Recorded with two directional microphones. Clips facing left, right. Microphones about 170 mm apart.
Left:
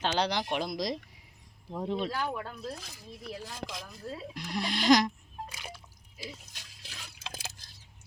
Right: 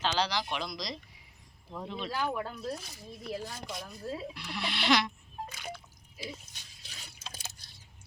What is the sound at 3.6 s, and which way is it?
Speech, 70° left (ahead or behind).